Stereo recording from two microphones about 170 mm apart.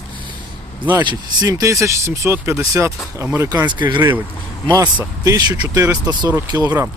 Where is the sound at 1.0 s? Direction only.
20° right (ahead or behind).